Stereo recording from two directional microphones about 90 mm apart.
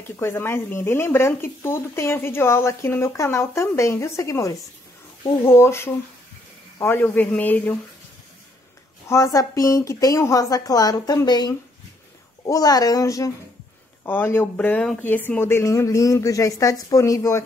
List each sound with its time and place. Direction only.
0.2 s speech: 25° left (ahead or behind)
9.1 s speech: 35° left (ahead or behind)
14.0 s speech: 25° left (ahead or behind)
15.6 s speech: 35° left (ahead or behind)